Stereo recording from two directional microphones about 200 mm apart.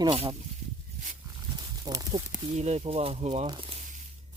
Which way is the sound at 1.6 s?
20° right (ahead or behind).